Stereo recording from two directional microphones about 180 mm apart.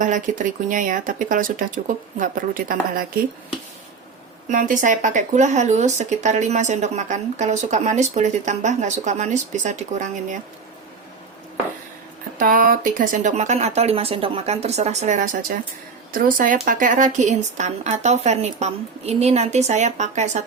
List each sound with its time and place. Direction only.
0.0 s speech: 45° right (ahead or behind)
4.4 s speech: 45° right (ahead or behind)
12.4 s speech: 50° right (ahead or behind)